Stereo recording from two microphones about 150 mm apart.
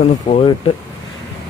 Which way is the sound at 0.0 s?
45° left (ahead or behind).